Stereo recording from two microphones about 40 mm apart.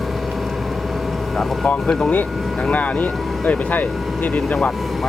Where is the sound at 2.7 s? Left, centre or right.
Left.